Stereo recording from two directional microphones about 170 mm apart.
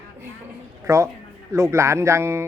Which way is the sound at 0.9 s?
15° right (ahead or behind).